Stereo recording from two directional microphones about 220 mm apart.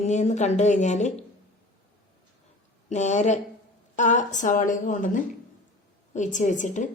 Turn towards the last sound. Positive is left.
turn(degrees=35)  # may be behind; listen again after turning